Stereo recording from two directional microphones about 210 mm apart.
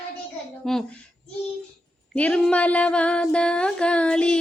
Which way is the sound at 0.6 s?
Centre (ahead or behind).